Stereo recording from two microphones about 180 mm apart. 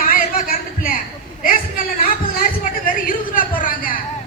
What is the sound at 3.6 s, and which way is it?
Speech, 50° left (ahead or behind).